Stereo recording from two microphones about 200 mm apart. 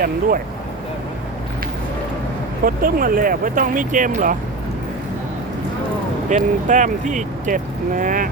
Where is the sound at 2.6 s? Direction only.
45° right (ahead or behind).